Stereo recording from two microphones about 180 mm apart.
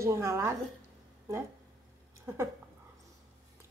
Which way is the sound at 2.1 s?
15° right (ahead or behind).